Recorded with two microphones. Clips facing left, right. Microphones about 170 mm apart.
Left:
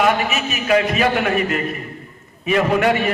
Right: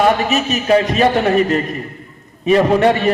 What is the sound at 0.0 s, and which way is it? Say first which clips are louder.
A man's voice: right 4 dB; 40° right (ahead or behind).